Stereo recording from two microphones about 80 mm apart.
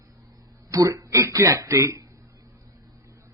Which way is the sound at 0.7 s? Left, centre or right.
Right.